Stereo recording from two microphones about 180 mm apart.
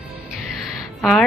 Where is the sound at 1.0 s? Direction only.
5° left (ahead or behind).